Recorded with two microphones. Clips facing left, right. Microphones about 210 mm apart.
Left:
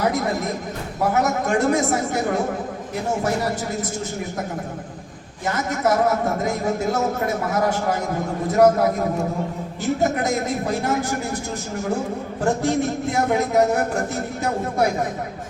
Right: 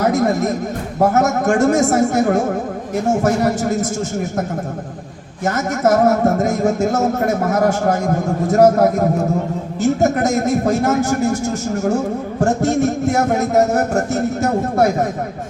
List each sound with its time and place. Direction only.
0.0 s speech: 45° right (ahead or behind)
5.5 s speech: 45° right (ahead or behind)